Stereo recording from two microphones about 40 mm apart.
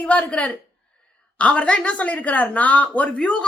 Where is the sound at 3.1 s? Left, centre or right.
Left.